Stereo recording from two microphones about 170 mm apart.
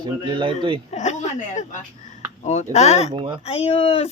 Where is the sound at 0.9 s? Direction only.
45° left (ahead or behind).